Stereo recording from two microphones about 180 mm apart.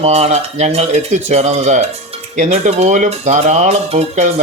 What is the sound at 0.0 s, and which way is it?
Speech, 35° right (ahead or behind).